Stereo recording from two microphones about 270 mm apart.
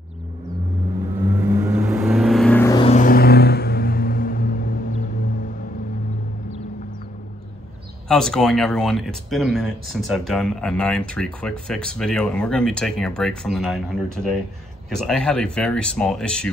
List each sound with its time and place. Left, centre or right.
1.6 s vehicle: centre
2.8 s music: left
8.1 s speech: centre